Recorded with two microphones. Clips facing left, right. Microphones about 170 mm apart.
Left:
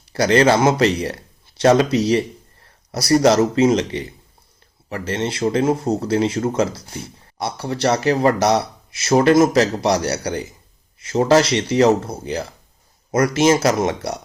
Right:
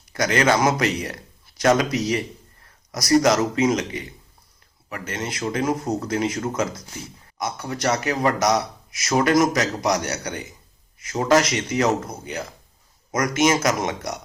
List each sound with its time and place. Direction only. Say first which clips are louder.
0.1 s speech: left 5 dB; 30° left (ahead or behind)